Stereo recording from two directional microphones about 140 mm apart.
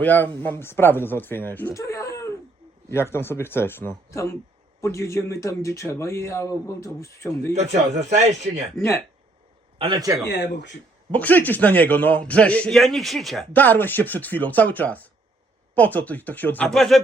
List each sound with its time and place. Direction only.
0.0 s a man's voice: 10° left (ahead or behind)
7.5 s speech: 55° right (ahead or behind)
9.7 s a man's voice: 40° right (ahead or behind)
11.1 s a man's voice: 10° left (ahead or behind)
13.5 s a man's voice: 15° left (ahead or behind)
16.6 s speech: centre (ahead or behind)